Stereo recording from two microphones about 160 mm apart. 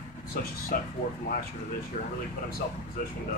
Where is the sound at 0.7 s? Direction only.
65° left (ahead or behind).